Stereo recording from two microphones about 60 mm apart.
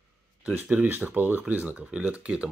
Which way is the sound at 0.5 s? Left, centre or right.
Right.